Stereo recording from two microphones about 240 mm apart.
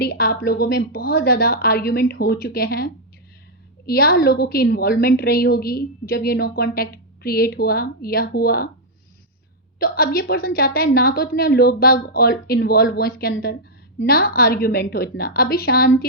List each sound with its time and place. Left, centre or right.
0.0 s a woman's voice: left
9.7 s a woman's voice: left